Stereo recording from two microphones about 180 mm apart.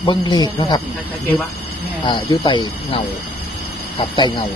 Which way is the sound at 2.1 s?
25° left (ahead or behind).